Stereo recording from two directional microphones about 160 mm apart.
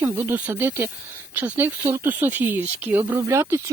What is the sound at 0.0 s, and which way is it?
Speech, 15° right (ahead or behind).